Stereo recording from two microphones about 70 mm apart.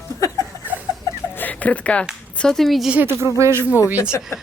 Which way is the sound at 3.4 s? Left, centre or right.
Right.